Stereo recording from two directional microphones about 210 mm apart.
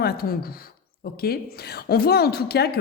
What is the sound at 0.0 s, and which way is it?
A woman's voice, 50° left (ahead or behind).